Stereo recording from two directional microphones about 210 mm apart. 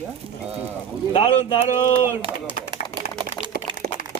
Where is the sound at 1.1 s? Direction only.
25° left (ahead or behind).